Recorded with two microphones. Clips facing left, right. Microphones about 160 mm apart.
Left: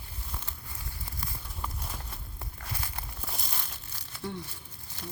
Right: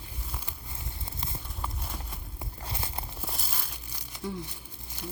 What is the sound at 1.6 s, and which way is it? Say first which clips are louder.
Clip-clop: right 1 dB; centre (ahead or behind).